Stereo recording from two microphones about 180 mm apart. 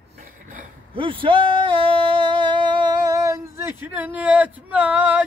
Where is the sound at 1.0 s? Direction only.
30° right (ahead or behind); by 5.2 s 10° right (ahead or behind).